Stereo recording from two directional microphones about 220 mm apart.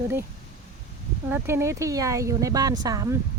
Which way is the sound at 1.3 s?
10° right (ahead or behind).